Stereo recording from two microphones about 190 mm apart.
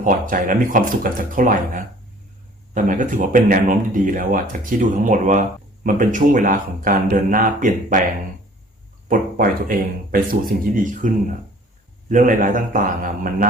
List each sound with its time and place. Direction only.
0.0 s speech: 45° right (ahead or behind)
9.0 s speech: 50° right (ahead or behind)